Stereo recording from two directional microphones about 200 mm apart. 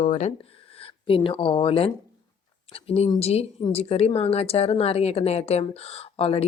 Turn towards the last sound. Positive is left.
turn(degrees=30)  # may be behind; listen again after turning